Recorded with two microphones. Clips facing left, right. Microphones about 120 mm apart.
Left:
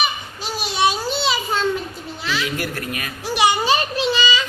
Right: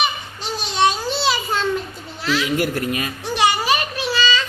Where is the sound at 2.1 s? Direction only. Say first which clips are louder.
Right 5 dB; centre (ahead or behind).